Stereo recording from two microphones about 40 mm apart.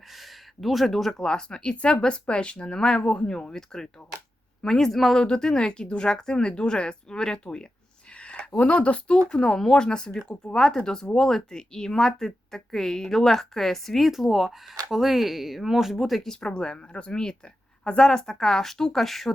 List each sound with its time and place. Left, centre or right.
0.2 s a sound: centre
1.1 s a woman's voice: centre
5.1 s speech: centre
8.2 s a sound: left
8.6 s speech: left
9.6 s a woman's voice: centre
14.0 s speech: centre
16.6 s a woman's voice: left; by 19.3 s centre